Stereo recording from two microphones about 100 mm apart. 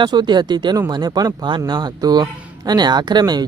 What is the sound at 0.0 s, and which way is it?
Speech, 50° right (ahead or behind).